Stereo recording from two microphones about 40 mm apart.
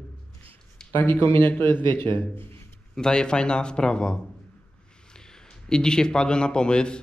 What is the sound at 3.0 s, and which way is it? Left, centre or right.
A man's voice, centre.